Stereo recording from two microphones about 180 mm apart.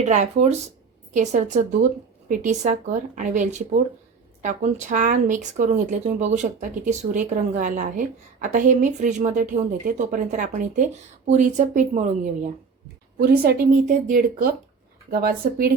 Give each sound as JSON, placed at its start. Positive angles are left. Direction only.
{"t": 0.0, "sound": "speech", "side_deg": -40}
{"t": 13.4, "sound": "speech", "side_deg": -50}